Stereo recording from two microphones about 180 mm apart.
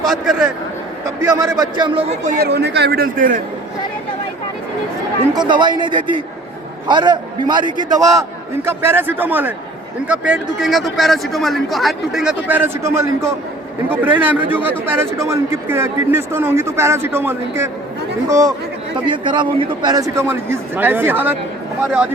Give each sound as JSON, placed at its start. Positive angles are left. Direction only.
{"t": 0.0, "sound": "a man's voice", "side_deg": 0}
{"t": 1.2, "sound": "a man's voice", "side_deg": -20}
{"t": 2.3, "sound": "speech", "side_deg": -65}
{"t": 5.5, "sound": "a man's voice", "side_deg": -25}